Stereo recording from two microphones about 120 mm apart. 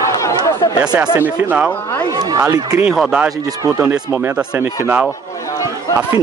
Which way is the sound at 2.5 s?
30° right (ahead or behind).